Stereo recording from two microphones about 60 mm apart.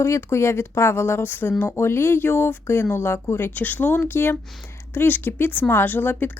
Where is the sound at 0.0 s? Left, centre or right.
Left.